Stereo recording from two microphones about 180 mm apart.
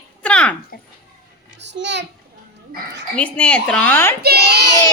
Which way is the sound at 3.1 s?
5° left (ahead or behind).